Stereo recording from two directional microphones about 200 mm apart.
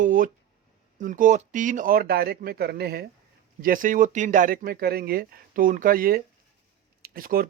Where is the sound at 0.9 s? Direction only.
40° right (ahead or behind).